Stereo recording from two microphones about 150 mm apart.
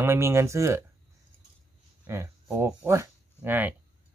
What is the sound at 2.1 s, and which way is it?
Speech, 15° right (ahead or behind).